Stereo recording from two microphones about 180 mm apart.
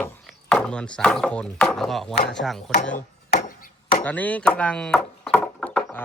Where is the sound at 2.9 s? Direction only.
50° left (ahead or behind).